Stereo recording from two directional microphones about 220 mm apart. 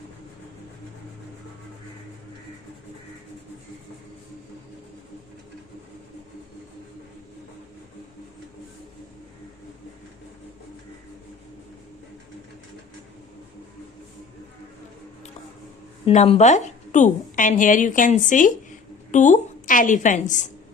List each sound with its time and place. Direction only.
16.0 s a woman's voice: 25° left (ahead or behind)